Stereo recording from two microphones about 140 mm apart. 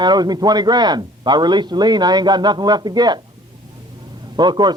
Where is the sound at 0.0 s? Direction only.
30° right (ahead or behind).